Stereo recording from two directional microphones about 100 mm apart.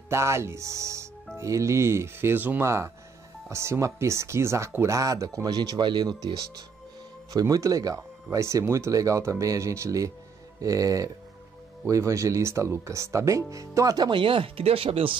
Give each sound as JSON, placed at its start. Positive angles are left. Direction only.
{"t": 0.1, "sound": "speech", "side_deg": -25}
{"t": 14.2, "sound": "speech", "side_deg": -65}